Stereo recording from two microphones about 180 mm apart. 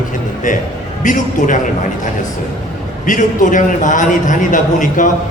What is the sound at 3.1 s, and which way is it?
A man's voice, 45° left (ahead or behind).